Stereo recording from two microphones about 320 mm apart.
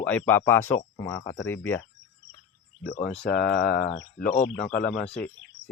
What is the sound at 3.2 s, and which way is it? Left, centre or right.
Speech, left.